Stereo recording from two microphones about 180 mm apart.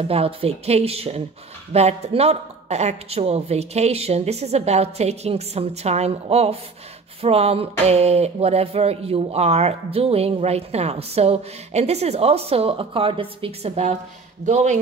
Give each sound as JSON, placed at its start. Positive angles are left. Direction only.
{"t": 0.1, "sound": "speech", "side_deg": -35}